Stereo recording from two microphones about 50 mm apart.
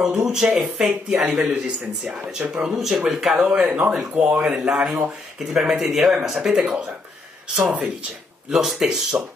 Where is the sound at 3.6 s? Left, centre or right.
Right.